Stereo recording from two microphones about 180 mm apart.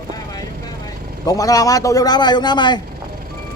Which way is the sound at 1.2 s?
20° left (ahead or behind).